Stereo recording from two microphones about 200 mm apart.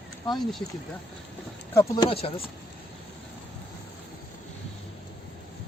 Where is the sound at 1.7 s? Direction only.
15° left (ahead or behind).